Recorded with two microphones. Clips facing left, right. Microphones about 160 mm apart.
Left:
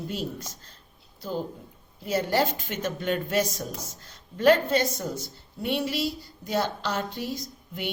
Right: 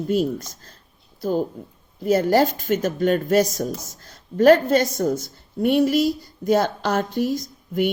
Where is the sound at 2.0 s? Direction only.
45° right (ahead or behind).